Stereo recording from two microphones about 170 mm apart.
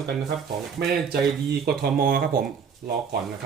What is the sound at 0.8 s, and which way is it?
Speech, 65° right (ahead or behind).